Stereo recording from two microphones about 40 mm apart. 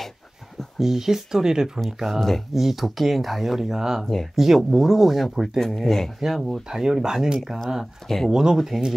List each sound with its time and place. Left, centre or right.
0.7 s speech: centre
2.1 s speech: centre
2.5 s speech: centre
4.0 s speech: centre
4.6 s speech: centre
5.6 s speech: centre
6.7 s speech: centre
7.3 s speech: centre
7.8 s speech: centre
8.3 s speech: centre